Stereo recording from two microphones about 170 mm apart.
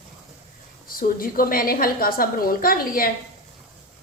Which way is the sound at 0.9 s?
55° left (ahead or behind).